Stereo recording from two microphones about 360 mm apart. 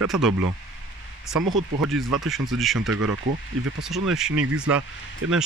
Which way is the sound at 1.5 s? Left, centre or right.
Centre.